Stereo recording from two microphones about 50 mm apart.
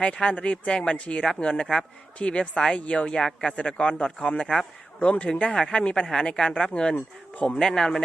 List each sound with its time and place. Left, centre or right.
0.0 s a woman's voice: centre
7.3 s a woman's voice: left
7.6 s a man's voice: centre